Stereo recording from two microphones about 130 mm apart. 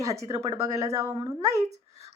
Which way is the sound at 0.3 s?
25° right (ahead or behind).